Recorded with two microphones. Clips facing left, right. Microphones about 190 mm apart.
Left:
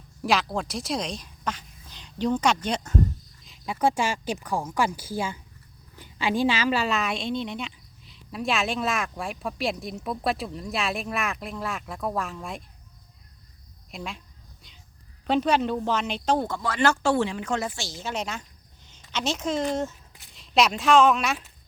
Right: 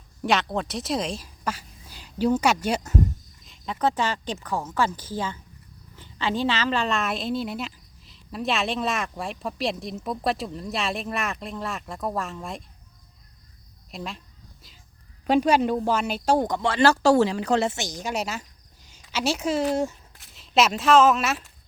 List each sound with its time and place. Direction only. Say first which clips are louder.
0.2 s speech: right 1 dB; centre (ahead or behind)
3.4 s a woman's voice: left 1 dB; 5° left (ahead or behind)
13.9 s a woman's voice: right 1 dB; centre (ahead or behind)
15.3 s speech: right 3 dB; 10° right (ahead or behind)
16.6 s a woman's voice: right 5 dB; 30° right (ahead or behind); by 21.5 s centre (ahead or behind)